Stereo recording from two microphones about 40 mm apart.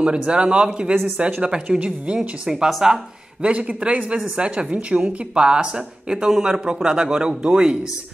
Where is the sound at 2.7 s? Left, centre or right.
Centre.